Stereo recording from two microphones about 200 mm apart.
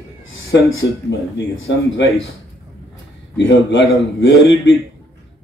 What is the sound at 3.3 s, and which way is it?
A man's voice, 65° left (ahead or behind).